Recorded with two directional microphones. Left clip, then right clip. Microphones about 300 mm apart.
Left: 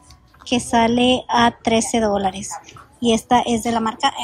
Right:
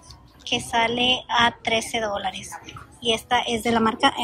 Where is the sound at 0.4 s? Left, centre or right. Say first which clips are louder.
Left 4 dB; centre.